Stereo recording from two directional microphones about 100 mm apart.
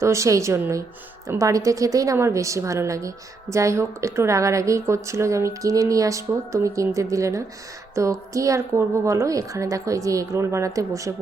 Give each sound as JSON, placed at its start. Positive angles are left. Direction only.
{"t": 0.0, "sound": "a woman's voice", "side_deg": -30}